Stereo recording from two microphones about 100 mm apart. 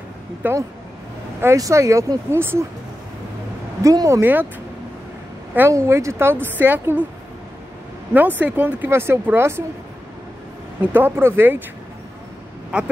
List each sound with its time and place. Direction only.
0.4 s speech: 20° right (ahead or behind)
1.4 s speech: 30° right (ahead or behind)
3.8 s speech: 35° right (ahead or behind)
4.2 s speech: 20° right (ahead or behind)
5.7 s a woman's voice: 30° right (ahead or behind)
8.1 s speech: 15° right (ahead or behind)
10.9 s speech: 20° right (ahead or behind)
12.7 s a woman's voice: 10° right (ahead or behind)